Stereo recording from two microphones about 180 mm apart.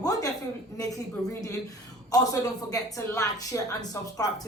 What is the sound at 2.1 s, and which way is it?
A woman's voice, 20° left (ahead or behind).